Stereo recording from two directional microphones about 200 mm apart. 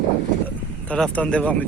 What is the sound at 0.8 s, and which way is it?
Speech, 5° left (ahead or behind).